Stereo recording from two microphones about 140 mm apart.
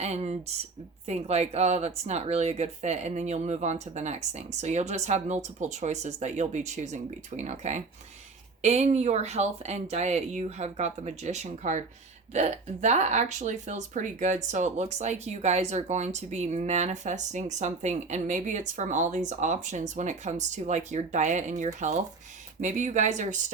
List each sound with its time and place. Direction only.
0.0 s speech: 50° right (ahead or behind)